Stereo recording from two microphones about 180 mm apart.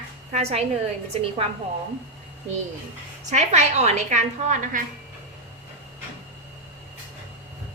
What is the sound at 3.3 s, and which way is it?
A woman's voice, 40° right (ahead or behind).